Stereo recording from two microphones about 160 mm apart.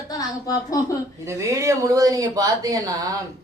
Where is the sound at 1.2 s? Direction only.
20° right (ahead or behind).